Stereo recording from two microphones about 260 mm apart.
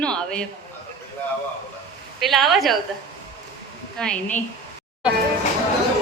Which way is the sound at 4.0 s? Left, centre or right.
Centre.